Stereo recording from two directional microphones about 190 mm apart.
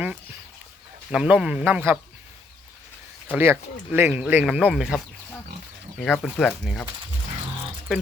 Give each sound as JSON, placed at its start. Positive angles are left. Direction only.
{"t": 1.1, "sound": "speech", "side_deg": -5}
{"t": 3.3, "sound": "speech", "side_deg": -10}